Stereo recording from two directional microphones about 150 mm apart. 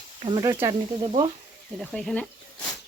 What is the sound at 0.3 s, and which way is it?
Speech, 30° right (ahead or behind).